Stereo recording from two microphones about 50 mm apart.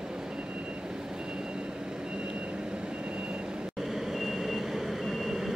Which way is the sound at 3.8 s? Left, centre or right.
Centre.